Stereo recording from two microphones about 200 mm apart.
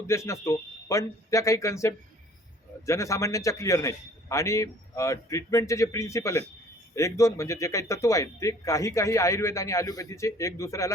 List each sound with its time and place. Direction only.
0.1 s a man's voice: 15° left (ahead or behind)